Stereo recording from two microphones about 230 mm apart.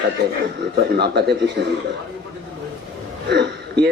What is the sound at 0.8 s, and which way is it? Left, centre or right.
Speech, right.